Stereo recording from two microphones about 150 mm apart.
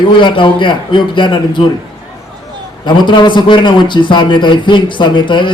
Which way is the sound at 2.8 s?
30° left (ahead or behind).